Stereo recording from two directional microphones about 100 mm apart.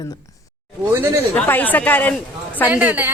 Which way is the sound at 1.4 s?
20° left (ahead or behind).